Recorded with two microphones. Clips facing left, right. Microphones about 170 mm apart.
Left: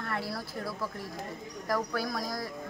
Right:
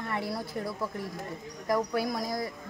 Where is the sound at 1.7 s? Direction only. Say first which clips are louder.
Right 3 dB; 20° right (ahead or behind).